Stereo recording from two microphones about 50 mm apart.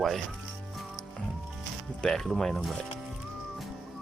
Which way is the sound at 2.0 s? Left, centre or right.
Centre.